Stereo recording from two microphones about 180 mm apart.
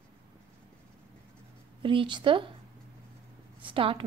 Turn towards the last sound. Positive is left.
turn(degrees=-30)  # may be behind; listen again after turning